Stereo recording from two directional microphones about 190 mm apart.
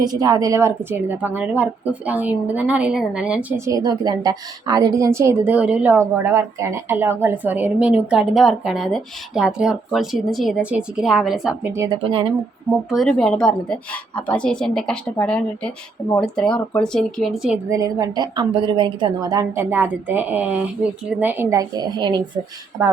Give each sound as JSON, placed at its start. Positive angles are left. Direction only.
{"t": 0.0, "sound": "a woman's voice", "side_deg": -20}
{"t": 3.7, "sound": "a woman's voice", "side_deg": -20}
{"t": 12.9, "sound": "a woman's voice", "side_deg": 0}
{"t": 17.7, "sound": "a woman's voice", "side_deg": -15}